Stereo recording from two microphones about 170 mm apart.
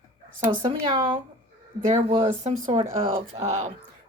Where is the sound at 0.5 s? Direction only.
25° right (ahead or behind).